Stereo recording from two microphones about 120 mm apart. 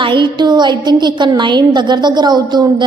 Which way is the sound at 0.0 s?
40° right (ahead or behind).